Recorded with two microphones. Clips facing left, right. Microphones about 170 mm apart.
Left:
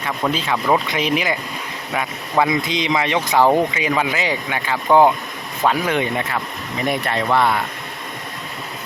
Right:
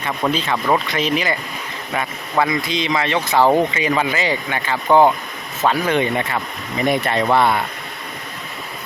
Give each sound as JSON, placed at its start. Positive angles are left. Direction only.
{"t": 0.2, "sound": "speech", "side_deg": 5}
{"t": 2.5, "sound": "speech", "side_deg": 20}